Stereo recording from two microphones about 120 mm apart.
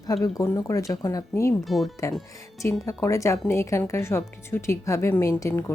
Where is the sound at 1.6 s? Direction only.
Centre (ahead or behind).